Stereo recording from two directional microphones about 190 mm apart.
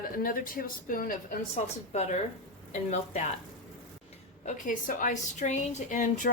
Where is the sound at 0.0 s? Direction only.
50° left (ahead or behind).